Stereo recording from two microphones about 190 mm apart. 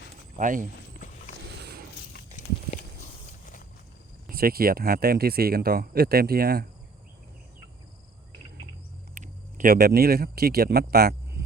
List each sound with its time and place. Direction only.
0.3 s speech: 45° right (ahead or behind)
3.4 s walk: 45° left (ahead or behind)
4.3 s speech: 50° right (ahead or behind)
9.1 s speech: 45° right (ahead or behind)